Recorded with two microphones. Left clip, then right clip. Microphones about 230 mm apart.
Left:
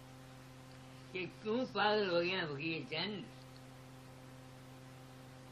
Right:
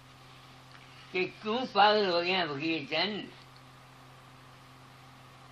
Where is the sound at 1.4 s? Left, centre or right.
Centre.